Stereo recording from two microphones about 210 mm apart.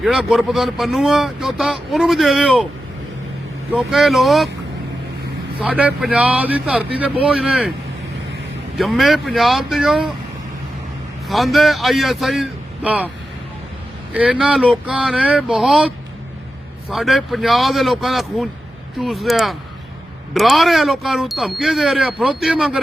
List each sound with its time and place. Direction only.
0.0 s speech: centre (ahead or behind)
3.7 s speech: centre (ahead or behind)
5.5 s speech: 5° right (ahead or behind)
8.8 s speech: centre (ahead or behind)
11.3 s speech: centre (ahead or behind)
14.1 s speech: 5° right (ahead or behind)
16.9 s speech: centre (ahead or behind)